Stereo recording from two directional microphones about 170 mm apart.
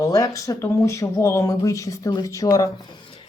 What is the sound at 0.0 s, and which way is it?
Speech, 20° left (ahead or behind).